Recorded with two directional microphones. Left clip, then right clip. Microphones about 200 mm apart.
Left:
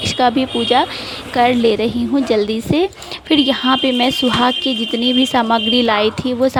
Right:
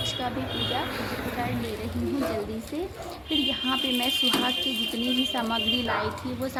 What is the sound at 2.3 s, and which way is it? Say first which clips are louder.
A woman's voice: left 16 dB; 45° left (ahead or behind).